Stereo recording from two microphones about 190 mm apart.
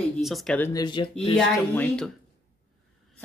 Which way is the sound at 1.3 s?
5° left (ahead or behind).